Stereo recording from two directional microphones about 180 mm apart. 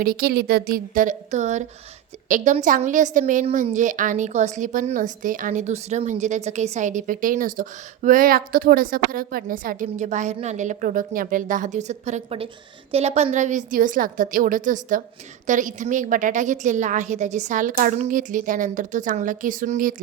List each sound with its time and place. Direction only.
0.0 s a woman's voice: 55° right (ahead or behind)